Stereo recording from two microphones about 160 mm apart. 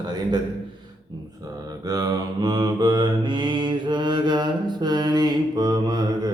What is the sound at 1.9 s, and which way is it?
Mantra, 25° right (ahead or behind).